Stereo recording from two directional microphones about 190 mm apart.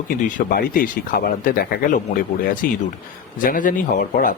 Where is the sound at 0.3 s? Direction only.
45° left (ahead or behind).